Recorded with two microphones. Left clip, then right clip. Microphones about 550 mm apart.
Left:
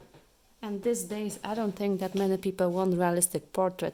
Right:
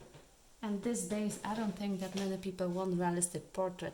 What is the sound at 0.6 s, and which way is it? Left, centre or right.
A woman's voice, centre.